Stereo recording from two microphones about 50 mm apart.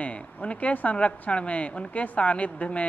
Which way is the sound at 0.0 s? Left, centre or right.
Left.